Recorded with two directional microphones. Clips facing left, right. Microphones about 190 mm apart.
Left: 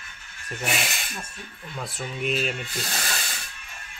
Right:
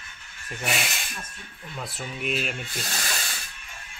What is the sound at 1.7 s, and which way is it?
Speech, centre (ahead or behind).